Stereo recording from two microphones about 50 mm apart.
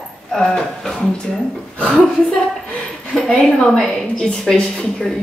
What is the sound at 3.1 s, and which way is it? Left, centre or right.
Speech, centre.